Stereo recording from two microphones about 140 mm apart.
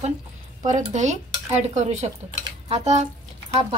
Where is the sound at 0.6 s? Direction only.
60° right (ahead or behind).